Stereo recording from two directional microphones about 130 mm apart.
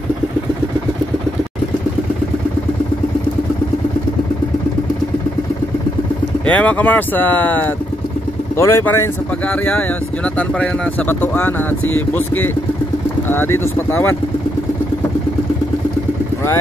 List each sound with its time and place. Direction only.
6.4 s speech: 10° left (ahead or behind)